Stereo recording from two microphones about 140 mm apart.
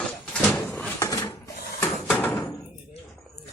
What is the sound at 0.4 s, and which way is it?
Drawer open or close, 10° left (ahead or behind).